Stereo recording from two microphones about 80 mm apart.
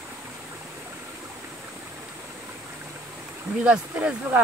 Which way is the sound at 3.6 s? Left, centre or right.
Centre.